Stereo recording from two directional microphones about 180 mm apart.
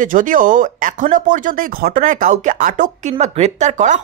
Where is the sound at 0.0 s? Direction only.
45° right (ahead or behind).